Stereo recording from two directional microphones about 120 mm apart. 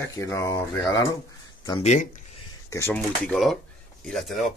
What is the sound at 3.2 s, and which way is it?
Speech, 5° left (ahead or behind).